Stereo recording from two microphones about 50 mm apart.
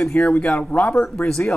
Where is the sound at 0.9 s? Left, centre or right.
Centre.